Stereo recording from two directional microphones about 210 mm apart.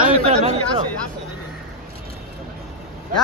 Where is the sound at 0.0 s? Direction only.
30° right (ahead or behind).